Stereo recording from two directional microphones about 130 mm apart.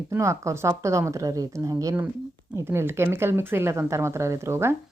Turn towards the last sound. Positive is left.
turn(degrees=-20)  # may be behind; listen again after turning